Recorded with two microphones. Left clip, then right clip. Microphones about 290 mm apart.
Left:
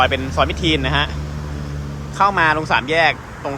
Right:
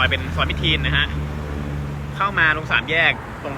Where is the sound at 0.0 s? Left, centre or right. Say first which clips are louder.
Left 4 dB; centre.